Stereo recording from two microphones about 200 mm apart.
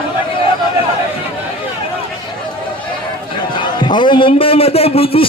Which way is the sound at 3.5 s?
25° left (ahead or behind).